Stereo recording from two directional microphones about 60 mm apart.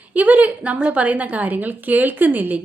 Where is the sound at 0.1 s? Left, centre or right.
Right.